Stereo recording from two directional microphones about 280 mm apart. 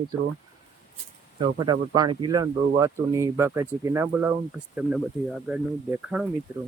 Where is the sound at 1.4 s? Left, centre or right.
Centre.